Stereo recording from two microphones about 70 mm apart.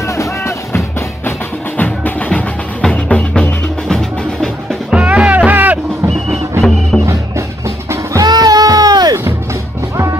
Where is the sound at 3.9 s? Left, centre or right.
Centre.